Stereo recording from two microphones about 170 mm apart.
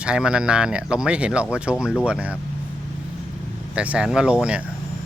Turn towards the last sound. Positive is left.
turn(degrees=-5)  # may be behind; listen again after turning